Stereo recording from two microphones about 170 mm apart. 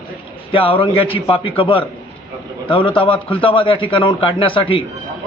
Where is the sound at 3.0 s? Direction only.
30° left (ahead or behind).